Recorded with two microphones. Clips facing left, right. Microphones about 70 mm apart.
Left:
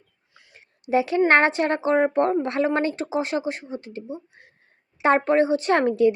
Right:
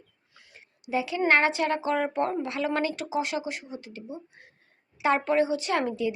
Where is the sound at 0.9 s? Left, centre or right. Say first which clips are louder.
Left 6 dB; left.